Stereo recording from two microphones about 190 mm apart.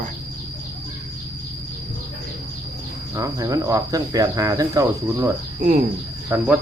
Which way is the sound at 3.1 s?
20° right (ahead or behind).